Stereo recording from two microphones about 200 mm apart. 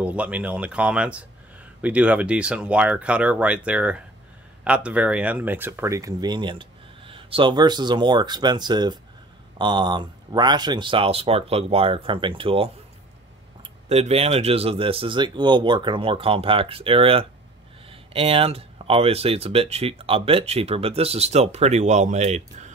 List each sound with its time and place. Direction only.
0.0 s speech: 5° right (ahead or behind); by 12.7 s 25° right (ahead or behind)
13.8 s speech: 30° right (ahead or behind)